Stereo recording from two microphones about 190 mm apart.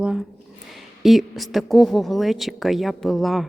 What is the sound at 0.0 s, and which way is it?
Speech, 5° right (ahead or behind).